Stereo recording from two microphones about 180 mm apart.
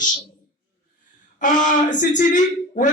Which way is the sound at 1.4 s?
45° left (ahead or behind).